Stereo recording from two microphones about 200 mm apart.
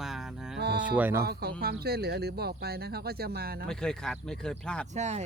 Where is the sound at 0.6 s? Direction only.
55° right (ahead or behind).